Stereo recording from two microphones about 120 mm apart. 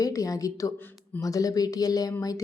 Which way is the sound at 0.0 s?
30° left (ahead or behind).